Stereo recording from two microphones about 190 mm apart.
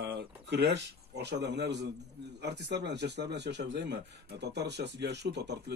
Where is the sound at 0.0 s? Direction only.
55° right (ahead or behind).